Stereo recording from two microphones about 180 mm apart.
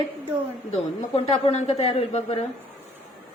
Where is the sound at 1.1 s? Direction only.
35° left (ahead or behind).